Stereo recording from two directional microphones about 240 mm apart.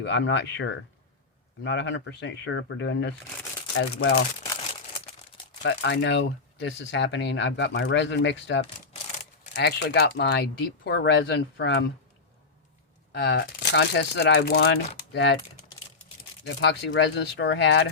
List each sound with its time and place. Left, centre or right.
0.0 s speech: left
5.6 s speech: left
13.1 s speech: left
16.6 s speech: left